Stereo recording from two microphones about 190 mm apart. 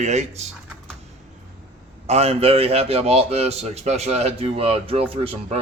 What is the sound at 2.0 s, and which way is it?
A man's voice, 35° right (ahead or behind).